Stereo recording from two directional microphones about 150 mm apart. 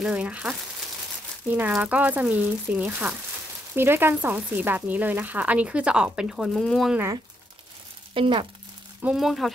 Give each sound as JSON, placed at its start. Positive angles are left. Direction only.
{"t": 0.0, "sound": "speech", "side_deg": -10}
{"t": 8.1, "sound": "speech", "side_deg": -35}
{"t": 9.0, "sound": "speech", "side_deg": -5}